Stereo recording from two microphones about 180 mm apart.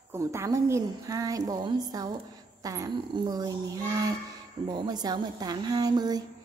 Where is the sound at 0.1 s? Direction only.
15° right (ahead or behind).